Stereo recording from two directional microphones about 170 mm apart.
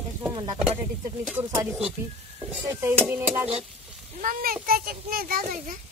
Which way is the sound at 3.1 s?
10° right (ahead or behind).